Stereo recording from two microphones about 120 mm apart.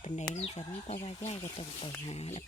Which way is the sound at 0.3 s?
60° left (ahead or behind).